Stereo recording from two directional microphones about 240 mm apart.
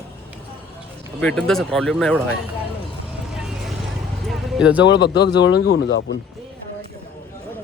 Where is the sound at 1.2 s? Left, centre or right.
Centre.